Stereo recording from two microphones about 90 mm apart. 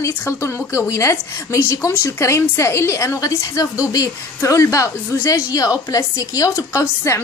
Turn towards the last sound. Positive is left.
turn(degrees=35)  # may be behind; listen again after turning